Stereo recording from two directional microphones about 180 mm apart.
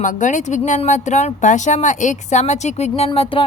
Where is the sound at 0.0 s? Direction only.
45° left (ahead or behind).